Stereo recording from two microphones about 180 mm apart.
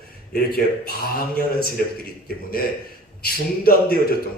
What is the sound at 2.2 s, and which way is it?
A man's voice, 55° left (ahead or behind).